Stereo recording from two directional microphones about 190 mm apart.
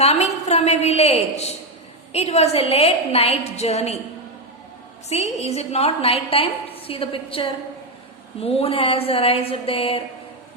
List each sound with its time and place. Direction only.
0.0 s a woman's voice: 35° left (ahead or behind)
5.0 s a woman's voice: 35° left (ahead or behind)